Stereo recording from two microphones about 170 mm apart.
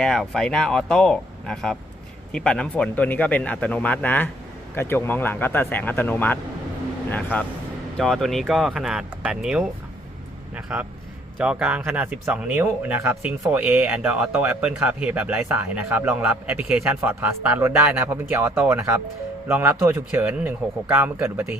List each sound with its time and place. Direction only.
0.0 s a man's voice: centre (ahead or behind); by 21.5 s 15° right (ahead or behind)